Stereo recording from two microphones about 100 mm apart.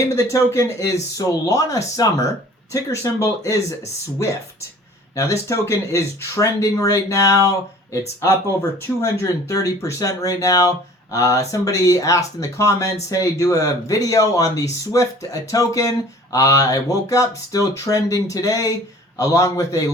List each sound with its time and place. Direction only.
0.0 s speech: 30° left (ahead or behind)
5.1 s speech: 30° left (ahead or behind)
9.0 s speech: 30° left (ahead or behind)